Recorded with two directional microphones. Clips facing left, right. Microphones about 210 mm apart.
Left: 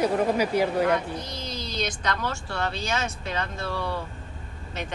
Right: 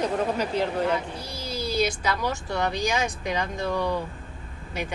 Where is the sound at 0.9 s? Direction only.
10° right (ahead or behind).